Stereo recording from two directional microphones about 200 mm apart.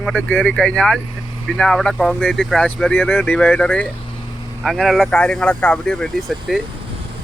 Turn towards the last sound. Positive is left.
turn(degrees=0)  # may be behind; listen again after turning